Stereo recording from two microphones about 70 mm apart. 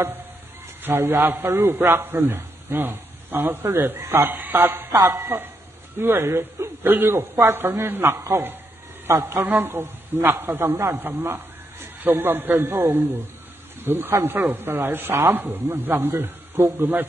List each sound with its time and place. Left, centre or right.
0.8 s a man's voice: right
16.1 s speech: right